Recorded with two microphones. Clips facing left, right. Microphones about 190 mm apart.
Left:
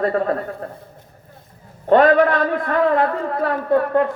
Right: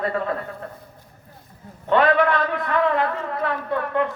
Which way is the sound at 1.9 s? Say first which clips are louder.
Left 5 dB; 40° left (ahead or behind).